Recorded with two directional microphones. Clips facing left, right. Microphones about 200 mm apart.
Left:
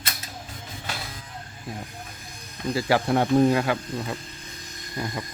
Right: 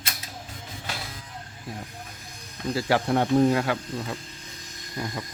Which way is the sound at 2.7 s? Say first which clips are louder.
Left 1 dB; 10° left (ahead or behind).